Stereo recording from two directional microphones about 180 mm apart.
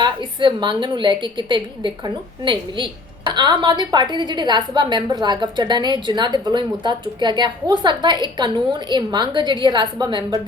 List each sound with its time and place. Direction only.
0.3 s a woman's voice: 25° right (ahead or behind)